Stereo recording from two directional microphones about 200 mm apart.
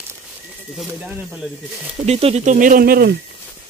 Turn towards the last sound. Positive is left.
turn(degrees=-50)  # may be behind; listen again after turning